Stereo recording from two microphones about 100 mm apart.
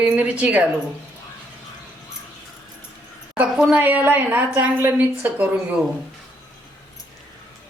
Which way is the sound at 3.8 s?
20° right (ahead or behind).